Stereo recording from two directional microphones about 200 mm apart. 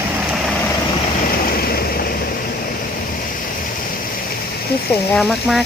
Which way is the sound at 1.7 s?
50° left (ahead or behind).